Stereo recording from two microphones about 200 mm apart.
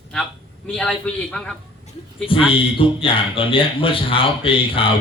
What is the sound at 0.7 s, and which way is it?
Speech, 5° left (ahead or behind).